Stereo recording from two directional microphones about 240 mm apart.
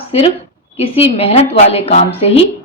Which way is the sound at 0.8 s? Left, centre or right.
Left.